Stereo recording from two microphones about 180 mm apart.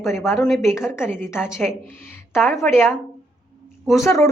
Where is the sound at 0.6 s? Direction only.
15° left (ahead or behind).